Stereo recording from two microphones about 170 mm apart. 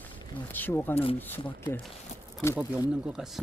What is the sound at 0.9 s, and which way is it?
Speech, 35° left (ahead or behind).